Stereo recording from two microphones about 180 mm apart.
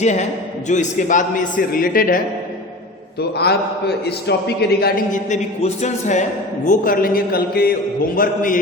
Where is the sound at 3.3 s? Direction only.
65° left (ahead or behind); by 8.6 s 50° left (ahead or behind).